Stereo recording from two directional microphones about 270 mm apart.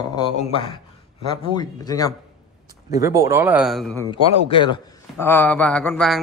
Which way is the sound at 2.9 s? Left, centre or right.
Centre.